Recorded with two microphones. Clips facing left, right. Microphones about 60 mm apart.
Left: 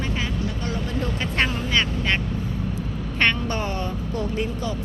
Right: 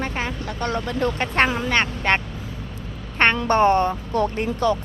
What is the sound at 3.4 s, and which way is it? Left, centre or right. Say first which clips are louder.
Speech: right 10 dB; right.